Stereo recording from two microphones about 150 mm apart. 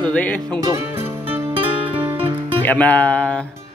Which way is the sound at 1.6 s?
40° right (ahead or behind).